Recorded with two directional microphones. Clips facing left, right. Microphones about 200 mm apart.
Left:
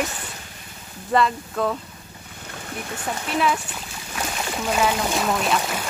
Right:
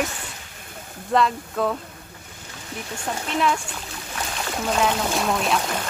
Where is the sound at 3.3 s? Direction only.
5° left (ahead or behind).